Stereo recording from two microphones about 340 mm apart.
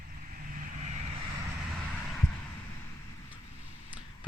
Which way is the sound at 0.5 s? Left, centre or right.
Right.